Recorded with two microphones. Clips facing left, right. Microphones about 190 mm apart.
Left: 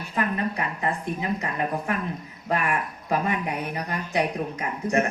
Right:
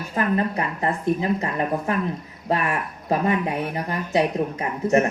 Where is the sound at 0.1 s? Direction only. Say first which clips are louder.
Right 4 dB; 35° right (ahead or behind).